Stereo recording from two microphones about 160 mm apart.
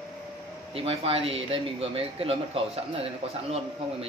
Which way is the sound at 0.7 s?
35° right (ahead or behind).